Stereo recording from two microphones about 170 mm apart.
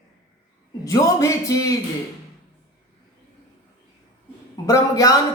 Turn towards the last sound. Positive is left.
turn(degrees=20)  # may be behind; listen again after turning